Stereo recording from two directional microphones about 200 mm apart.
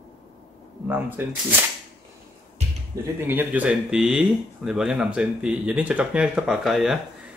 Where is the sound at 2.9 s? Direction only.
15° right (ahead or behind); by 7.0 s centre (ahead or behind).